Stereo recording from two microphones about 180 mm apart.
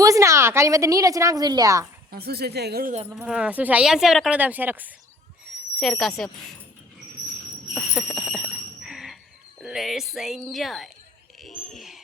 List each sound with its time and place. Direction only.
0.0 s a woman's voice: 15° right (ahead or behind)
2.0 s speech: 60° right (ahead or behind)
3.2 s a woman's voice: 5° right (ahead or behind)
5.8 s a woman's voice: centre (ahead or behind)
7.7 s a sound: 5° left (ahead or behind)
9.6 s a woman's voice: centre (ahead or behind)